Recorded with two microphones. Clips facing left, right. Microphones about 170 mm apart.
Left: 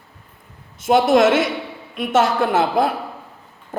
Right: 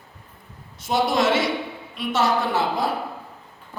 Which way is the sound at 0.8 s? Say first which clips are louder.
Left 7 dB; 50° left (ahead or behind).